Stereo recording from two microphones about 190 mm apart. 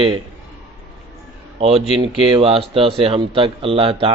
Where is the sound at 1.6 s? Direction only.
35° right (ahead or behind).